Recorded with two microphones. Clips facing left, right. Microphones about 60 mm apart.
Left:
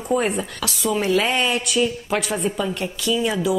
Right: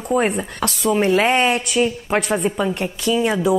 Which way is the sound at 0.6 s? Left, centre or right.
Right.